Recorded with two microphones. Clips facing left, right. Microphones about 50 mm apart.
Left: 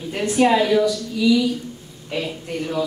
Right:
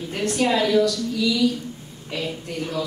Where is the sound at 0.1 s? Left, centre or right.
Centre.